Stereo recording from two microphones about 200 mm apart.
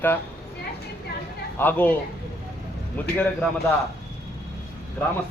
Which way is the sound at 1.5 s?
10° left (ahead or behind).